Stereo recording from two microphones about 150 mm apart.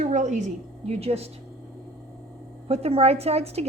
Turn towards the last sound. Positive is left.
turn(degrees=-45)  # may be behind; listen again after turning